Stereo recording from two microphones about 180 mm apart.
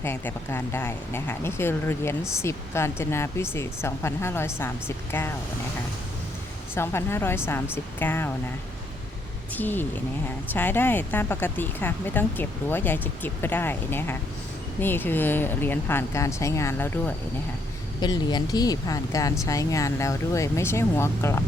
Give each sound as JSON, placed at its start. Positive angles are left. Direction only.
{"t": 0.0, "sound": "speech", "side_deg": 15}
{"t": 6.7, "sound": "speech", "side_deg": 15}
{"t": 9.6, "sound": "speech", "side_deg": 10}
{"t": 18.0, "sound": "speech", "side_deg": 25}